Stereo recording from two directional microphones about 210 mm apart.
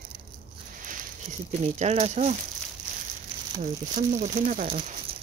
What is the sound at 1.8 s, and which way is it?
Speech, 30° right (ahead or behind).